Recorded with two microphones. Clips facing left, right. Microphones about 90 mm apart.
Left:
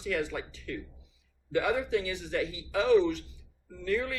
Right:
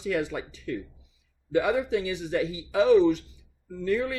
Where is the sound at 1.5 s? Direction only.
15° right (ahead or behind).